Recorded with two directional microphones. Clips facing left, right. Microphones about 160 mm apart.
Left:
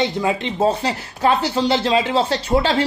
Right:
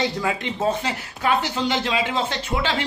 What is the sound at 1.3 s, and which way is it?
Speech, 35° left (ahead or behind).